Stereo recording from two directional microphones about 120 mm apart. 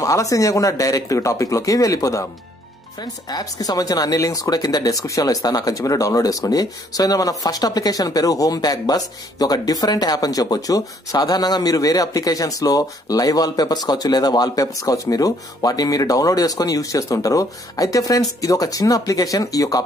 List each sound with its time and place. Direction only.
0.0 s speech: 25° left (ahead or behind)